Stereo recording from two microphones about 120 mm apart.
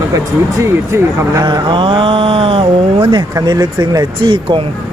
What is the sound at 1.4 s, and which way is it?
Speech, 40° right (ahead or behind).